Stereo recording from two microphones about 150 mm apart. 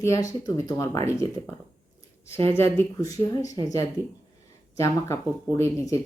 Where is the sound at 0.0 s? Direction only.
20° left (ahead or behind).